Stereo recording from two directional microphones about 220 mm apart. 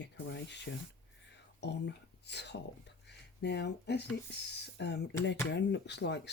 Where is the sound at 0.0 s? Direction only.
50° left (ahead or behind).